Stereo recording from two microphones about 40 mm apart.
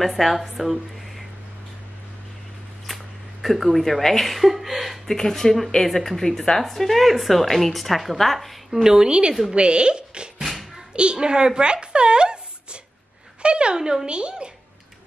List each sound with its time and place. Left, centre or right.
0.0 s speech: centre
3.4 s speech: centre
5.0 s speech: centre
8.8 s a woman's voice: centre
13.4 s a sound: right
13.7 s a woman's voice: centre
14.0 s speech: right